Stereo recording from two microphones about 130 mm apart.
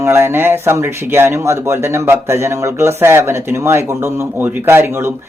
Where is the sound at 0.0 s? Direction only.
20° right (ahead or behind).